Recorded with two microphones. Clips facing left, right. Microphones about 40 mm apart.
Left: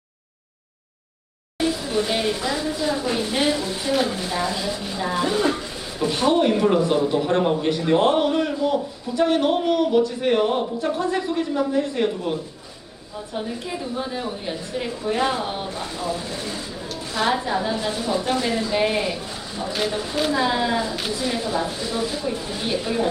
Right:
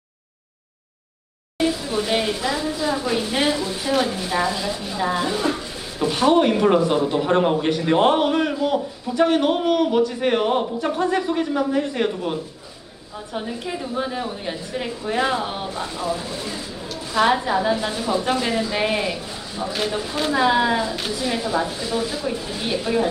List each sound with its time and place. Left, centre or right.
1.5 s a woman's voice: centre
3.5 s a sound: centre
3.8 s a woman's voice: centre
4.3 s a sound: centre
4.5 s a woman's voice: centre
5.2 s a sound: centre
6.5 s a woman's voice: centre
17.2 s a woman's voice: centre
20.3 s a woman's voice: centre